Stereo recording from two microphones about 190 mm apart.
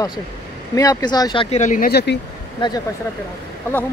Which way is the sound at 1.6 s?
45° left (ahead or behind).